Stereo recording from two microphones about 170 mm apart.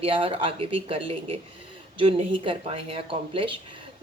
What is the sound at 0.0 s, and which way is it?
Speech, 35° right (ahead or behind).